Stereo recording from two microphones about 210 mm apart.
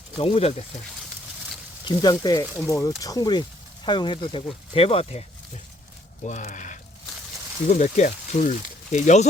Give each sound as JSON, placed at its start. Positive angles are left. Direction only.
{"t": 0.2, "sound": "speech", "side_deg": 25}
{"t": 1.8, "sound": "speech", "side_deg": 20}
{"t": 6.2, "sound": "speech", "side_deg": 35}